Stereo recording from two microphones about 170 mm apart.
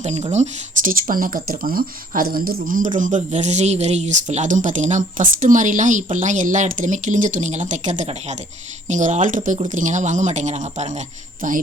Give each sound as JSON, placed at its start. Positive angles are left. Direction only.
{"t": 0.0, "sound": "speech", "side_deg": -45}